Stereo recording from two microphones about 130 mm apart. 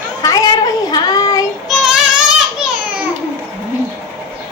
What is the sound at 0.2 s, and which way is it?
Child singing, 30° left (ahead or behind).